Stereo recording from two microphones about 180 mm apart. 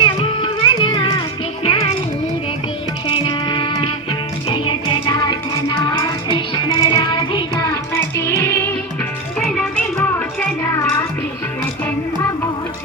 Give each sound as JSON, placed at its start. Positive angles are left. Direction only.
{"t": 0.0, "sound": "music", "side_deg": 30}
{"t": 3.1, "sound": "music", "side_deg": 30}